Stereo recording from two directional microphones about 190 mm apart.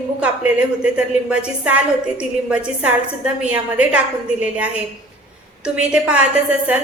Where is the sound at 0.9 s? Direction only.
5° right (ahead or behind).